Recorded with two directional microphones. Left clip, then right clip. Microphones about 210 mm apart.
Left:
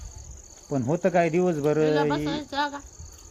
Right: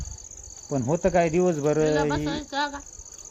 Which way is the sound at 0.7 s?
10° right (ahead or behind).